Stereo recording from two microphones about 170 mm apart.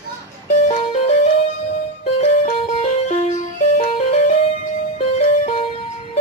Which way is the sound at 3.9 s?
35° left (ahead or behind).